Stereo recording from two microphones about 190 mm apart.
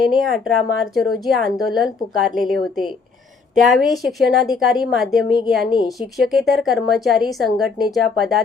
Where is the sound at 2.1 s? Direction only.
45° right (ahead or behind).